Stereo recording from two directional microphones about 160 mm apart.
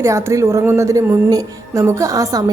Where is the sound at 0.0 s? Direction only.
20° right (ahead or behind).